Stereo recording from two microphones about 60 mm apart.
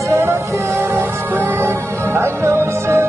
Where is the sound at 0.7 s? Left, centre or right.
Right.